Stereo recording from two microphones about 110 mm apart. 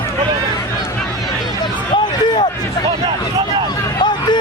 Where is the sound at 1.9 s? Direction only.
45° left (ahead or behind).